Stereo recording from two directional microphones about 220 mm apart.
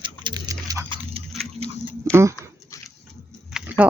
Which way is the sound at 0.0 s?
20° right (ahead or behind).